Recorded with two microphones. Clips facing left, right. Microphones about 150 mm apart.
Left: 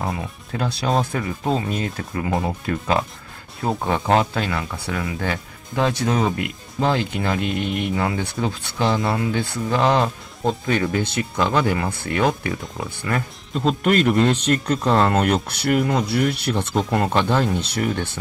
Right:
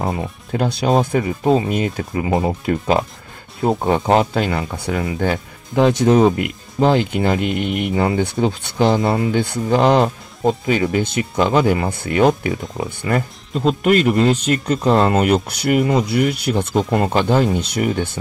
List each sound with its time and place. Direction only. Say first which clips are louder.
0.0 s speech: right 4 dB; 20° right (ahead or behind)
7.5 s speech: right 3 dB; 5° right (ahead or behind)
7.8 s speech: right 5 dB; 20° right (ahead or behind)
13.5 s speech: right 3 dB; centre (ahead or behind)